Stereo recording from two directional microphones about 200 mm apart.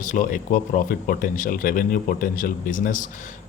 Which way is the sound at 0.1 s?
40° left (ahead or behind).